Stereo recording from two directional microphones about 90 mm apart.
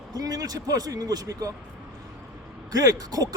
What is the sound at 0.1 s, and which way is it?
A man's voice, 45° right (ahead or behind).